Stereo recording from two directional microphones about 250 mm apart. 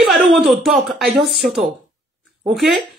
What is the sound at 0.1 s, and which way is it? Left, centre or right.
Speech, centre.